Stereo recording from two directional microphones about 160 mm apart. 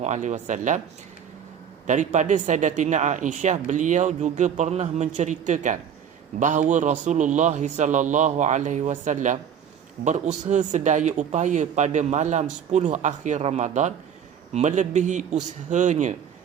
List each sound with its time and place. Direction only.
0.0 s speech: 45° right (ahead or behind)
2.1 s speech: 50° right (ahead or behind)